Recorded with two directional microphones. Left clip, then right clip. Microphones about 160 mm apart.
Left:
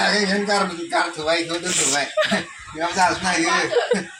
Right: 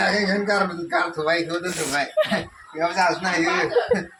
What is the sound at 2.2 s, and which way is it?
Speech, 10° right (ahead or behind).